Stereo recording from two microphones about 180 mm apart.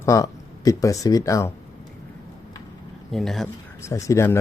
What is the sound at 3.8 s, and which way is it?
Speech, 15° left (ahead or behind).